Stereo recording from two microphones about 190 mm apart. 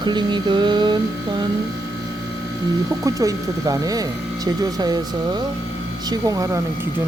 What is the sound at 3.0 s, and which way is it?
Speech, 15° right (ahead or behind).